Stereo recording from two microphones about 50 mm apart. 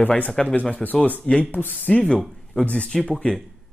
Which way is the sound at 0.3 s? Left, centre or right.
Centre.